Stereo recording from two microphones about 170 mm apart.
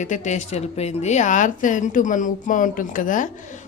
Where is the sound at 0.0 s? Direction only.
45° left (ahead or behind).